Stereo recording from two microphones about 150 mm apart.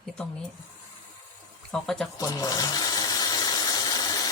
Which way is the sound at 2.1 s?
25° left (ahead or behind).